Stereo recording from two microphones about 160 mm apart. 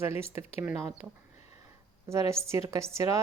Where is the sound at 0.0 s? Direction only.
40° left (ahead or behind).